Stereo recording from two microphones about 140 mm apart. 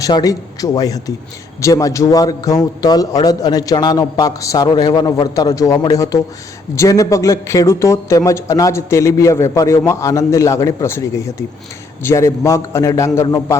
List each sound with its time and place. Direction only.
0.0 s speech: 25° left (ahead or behind)